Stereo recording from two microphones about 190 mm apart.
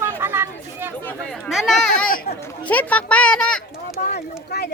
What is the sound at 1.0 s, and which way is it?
A child's voice, centre (ahead or behind).